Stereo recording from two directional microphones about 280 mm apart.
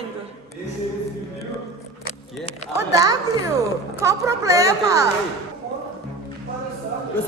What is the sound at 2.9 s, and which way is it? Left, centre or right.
A woman's voice, centre.